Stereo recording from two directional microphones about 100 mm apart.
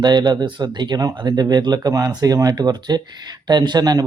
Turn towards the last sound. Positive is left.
turn(degrees=-40)  # may be behind; listen again after turning